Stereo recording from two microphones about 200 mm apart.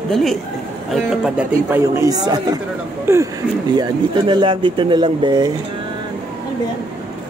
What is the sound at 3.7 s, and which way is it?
Speech, 25° right (ahead or behind).